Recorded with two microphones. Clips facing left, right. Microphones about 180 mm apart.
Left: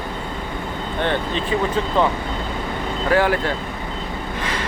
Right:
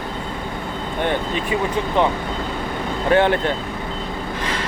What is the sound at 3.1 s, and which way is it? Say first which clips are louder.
Speech: right 2 dB; 25° right (ahead or behind).